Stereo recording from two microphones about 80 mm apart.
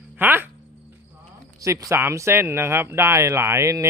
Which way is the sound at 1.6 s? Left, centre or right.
Right.